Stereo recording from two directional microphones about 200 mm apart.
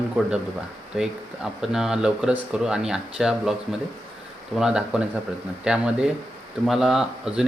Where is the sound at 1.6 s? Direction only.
Centre (ahead or behind).